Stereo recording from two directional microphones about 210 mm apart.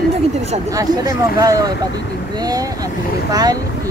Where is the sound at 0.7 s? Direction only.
15° right (ahead or behind).